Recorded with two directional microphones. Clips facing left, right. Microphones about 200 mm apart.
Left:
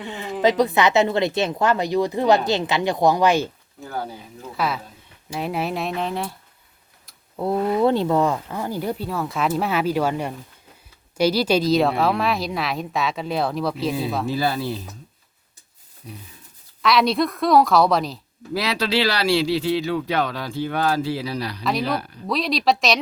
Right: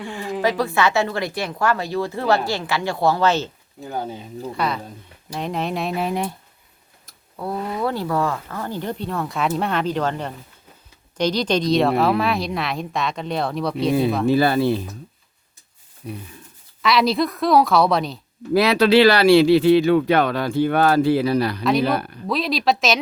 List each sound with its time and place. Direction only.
0.0 s speech: 20° left (ahead or behind)
3.8 s speech: 20° right (ahead or behind)
4.5 s speech: centre (ahead or behind); by 6.3 s 15° right (ahead or behind)
7.3 s speech: 25° left (ahead or behind); by 14.3 s centre (ahead or behind)
14.3 s speech: 60° right (ahead or behind)
16.0 s speech: 60° right (ahead or behind)
16.8 s speech: centre (ahead or behind)
18.5 s speech: 55° right (ahead or behind)
21.6 s speech: centre (ahead or behind)
21.8 s speech: 55° right (ahead or behind)
22.3 s speech: centre (ahead or behind)